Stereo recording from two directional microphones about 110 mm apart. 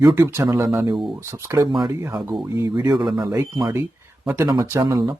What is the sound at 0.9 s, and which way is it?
Speech, centre (ahead or behind).